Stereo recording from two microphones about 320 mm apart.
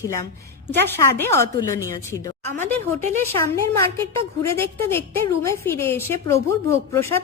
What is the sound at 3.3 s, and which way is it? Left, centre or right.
A woman's voice, centre.